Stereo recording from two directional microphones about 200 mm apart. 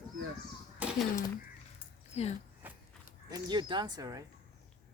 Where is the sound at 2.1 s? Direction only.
35° left (ahead or behind).